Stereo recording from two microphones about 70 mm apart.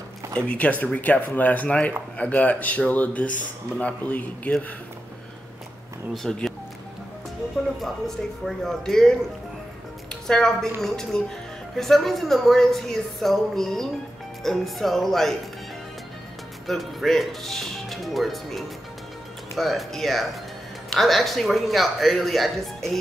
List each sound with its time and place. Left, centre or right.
0.4 s speech: centre
6.2 s a woman's voice: centre
7.8 s speech: centre
10.2 s a woman's voice: centre
16.6 s a woman's voice: centre